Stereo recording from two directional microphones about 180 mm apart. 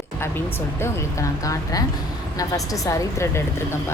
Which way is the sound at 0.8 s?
15° left (ahead or behind).